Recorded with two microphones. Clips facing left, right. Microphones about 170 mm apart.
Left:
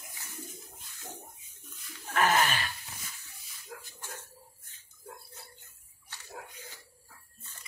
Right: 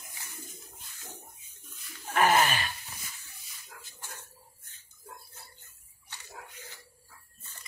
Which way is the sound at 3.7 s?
55° left (ahead or behind).